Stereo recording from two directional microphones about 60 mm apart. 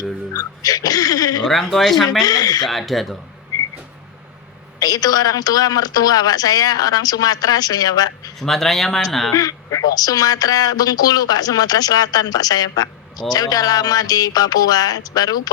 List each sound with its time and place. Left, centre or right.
0.3 s speech: left
1.5 s speech: centre
2.2 s speech: left
2.6 s speech: centre
4.8 s speech: left
8.4 s speech: centre
9.3 s speech: left